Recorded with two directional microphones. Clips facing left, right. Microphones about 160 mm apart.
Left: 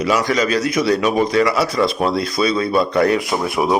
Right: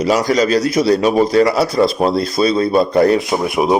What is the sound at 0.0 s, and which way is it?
A man's voice, 40° right (ahead or behind).